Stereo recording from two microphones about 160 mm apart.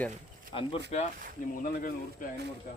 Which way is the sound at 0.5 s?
30° left (ahead or behind).